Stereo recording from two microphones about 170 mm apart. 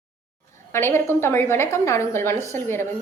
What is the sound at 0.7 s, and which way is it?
A woman's voice, 15° left (ahead or behind).